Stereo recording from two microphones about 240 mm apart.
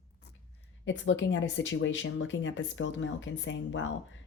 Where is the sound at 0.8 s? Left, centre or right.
Left.